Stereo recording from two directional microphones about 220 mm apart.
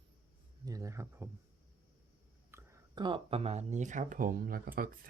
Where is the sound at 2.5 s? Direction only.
15° right (ahead or behind).